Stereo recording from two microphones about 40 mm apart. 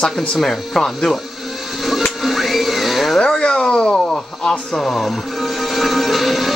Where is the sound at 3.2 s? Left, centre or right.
Left.